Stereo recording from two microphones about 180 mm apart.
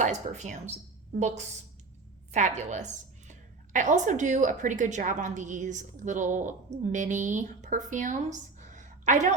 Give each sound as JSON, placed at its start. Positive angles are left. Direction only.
{"t": 0.0, "sound": "speech", "side_deg": -40}
{"t": 2.3, "sound": "a woman's voice", "side_deg": -40}